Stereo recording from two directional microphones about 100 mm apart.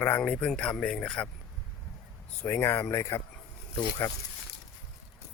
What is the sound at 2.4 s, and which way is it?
Speech, 25° left (ahead or behind).